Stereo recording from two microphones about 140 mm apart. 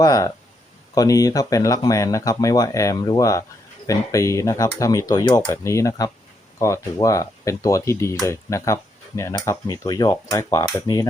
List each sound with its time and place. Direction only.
0.0 s speech: 25° left (ahead or behind)